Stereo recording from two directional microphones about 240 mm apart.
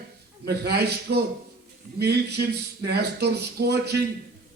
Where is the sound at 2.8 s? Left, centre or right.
Right.